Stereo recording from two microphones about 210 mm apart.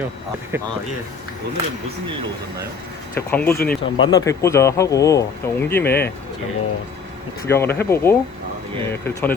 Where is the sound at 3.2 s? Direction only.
10° left (ahead or behind).